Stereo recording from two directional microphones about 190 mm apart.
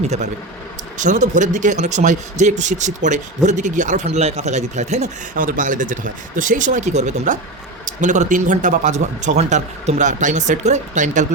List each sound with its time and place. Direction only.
0.9 s speech: 40° right (ahead or behind)